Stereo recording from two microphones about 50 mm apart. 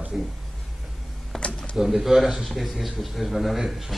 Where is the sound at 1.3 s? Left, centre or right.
Left.